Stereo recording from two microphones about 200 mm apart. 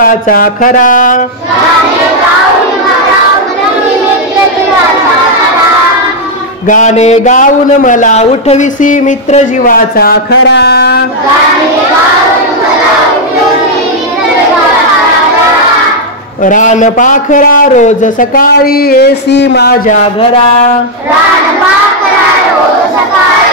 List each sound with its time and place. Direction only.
0.0 s a man's voice: 45° left (ahead or behind)
6.7 s a man's voice: 35° left (ahead or behind); by 11.1 s 55° left (ahead or behind)
16.4 s a man's voice: 40° left (ahead or behind)